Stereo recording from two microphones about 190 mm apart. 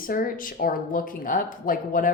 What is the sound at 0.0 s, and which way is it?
A woman's voice, 45° left (ahead or behind).